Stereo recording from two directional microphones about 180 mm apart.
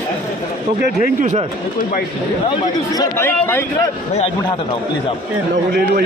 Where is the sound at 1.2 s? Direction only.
40° right (ahead or behind).